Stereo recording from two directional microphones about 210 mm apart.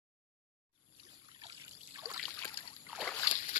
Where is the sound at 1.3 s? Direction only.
25° right (ahead or behind).